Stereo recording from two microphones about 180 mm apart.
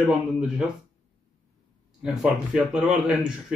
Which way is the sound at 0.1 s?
5° right (ahead or behind).